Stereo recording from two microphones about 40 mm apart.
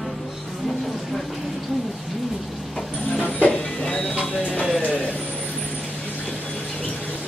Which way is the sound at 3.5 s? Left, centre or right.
Centre.